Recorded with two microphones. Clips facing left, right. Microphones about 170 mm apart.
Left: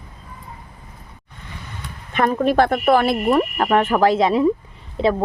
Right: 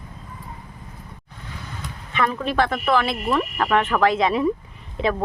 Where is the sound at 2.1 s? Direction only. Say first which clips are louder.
Left 5 dB; 45° left (ahead or behind).